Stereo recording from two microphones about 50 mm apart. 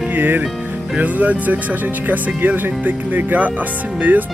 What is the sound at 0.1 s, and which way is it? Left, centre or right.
Music, right.